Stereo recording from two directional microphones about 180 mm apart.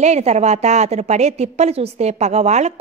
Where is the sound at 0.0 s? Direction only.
40° right (ahead or behind).